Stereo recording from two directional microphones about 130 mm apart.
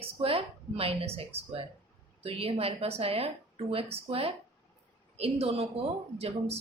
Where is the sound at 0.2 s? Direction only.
45° right (ahead or behind).